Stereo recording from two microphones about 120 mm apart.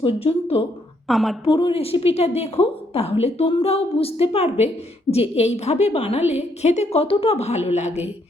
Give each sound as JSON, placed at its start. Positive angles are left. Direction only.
{"t": 0.0, "sound": "a woman's voice", "side_deg": 55}
{"t": 1.0, "sound": "a woman's voice", "side_deg": 0}
{"t": 1.5, "sound": "a woman's voice", "side_deg": 50}